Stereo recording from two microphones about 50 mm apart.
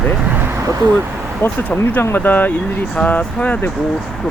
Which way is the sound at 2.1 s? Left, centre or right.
Left.